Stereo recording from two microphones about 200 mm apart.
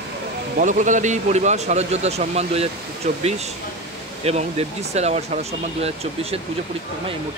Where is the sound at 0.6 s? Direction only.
40° right (ahead or behind).